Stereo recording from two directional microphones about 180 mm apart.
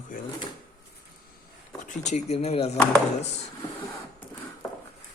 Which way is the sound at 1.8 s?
40° left (ahead or behind).